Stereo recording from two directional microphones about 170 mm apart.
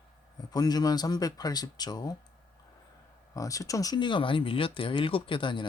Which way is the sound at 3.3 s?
20° left (ahead or behind).